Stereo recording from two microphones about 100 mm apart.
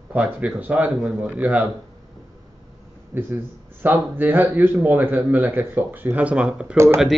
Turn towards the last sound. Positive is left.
turn(degrees=-25)  # may be behind; listen again after turning